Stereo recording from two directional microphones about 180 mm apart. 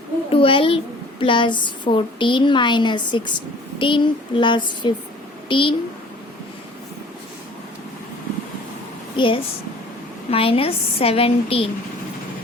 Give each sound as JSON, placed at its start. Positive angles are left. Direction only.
{"t": 0.3, "sound": "a child's voice", "side_deg": 30}
{"t": 9.1, "sound": "a woman's voice", "side_deg": 30}